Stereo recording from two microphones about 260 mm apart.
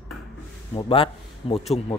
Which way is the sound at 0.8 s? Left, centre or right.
Left.